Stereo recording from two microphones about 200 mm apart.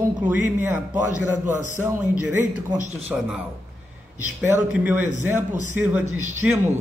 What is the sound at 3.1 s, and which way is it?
Speech, 5° right (ahead or behind).